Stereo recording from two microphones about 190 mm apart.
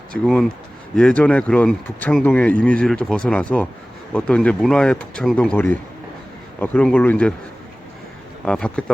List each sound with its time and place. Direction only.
0.3 s speech: 5° left (ahead or behind)
8.4 s speech: 5° left (ahead or behind)